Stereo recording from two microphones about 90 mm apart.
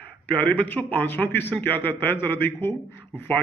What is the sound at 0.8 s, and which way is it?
A man's voice, 20° left (ahead or behind).